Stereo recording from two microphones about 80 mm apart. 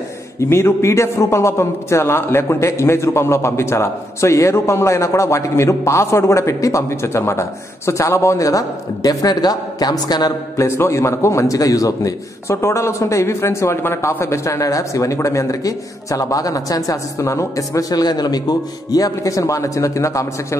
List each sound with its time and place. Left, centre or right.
0.4 s a man's voice: left
10.6 s a man's voice: left